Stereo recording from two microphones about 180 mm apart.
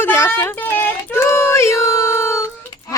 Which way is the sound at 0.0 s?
10° left (ahead or behind).